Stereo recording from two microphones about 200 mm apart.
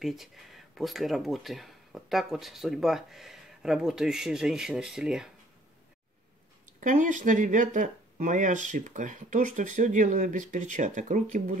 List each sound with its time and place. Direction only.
0.0 s speech: centre (ahead or behind)
6.8 s speech: 40° right (ahead or behind)